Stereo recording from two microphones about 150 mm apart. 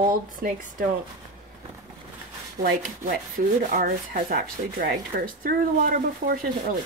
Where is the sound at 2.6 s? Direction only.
70° right (ahead or behind).